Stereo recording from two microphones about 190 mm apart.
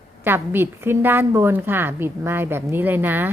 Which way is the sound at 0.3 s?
10° right (ahead or behind).